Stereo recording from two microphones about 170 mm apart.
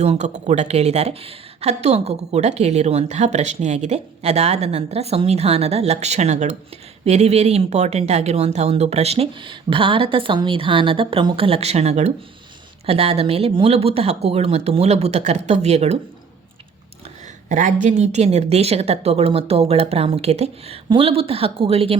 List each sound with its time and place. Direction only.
0.0 s speech: 40° right (ahead or behind)
17.5 s speech: 45° right (ahead or behind)